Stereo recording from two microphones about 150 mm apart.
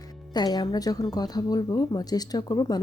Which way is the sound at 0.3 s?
25° left (ahead or behind).